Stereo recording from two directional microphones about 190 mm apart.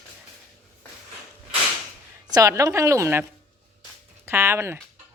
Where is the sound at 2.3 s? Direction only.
15° right (ahead or behind).